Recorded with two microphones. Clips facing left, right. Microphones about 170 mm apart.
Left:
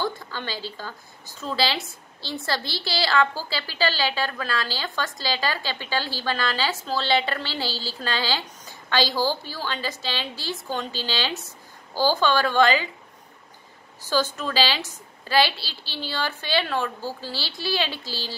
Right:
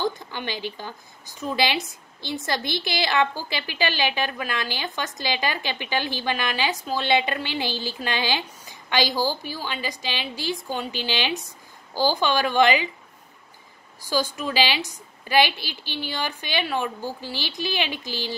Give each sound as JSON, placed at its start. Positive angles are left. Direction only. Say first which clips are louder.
{"t": 0.0, "sound": "a woman's voice", "louder": "right 2 dB", "side_deg": -20}
{"t": 14.0, "sound": "a woman's voice", "louder": "left 1 dB", "side_deg": -10}